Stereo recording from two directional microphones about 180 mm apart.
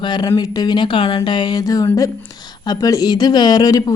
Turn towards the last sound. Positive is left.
turn(degrees=20)  # may be behind; listen again after turning